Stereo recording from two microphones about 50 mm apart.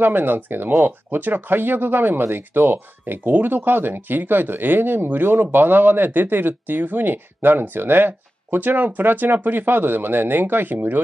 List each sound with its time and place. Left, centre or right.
0.0 s speech: right